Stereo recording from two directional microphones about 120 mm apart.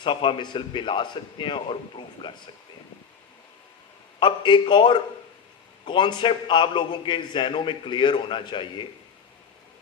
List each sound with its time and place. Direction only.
0.0 s a man's voice: 45° left (ahead or behind)
4.2 s a man's voice: 40° left (ahead or behind)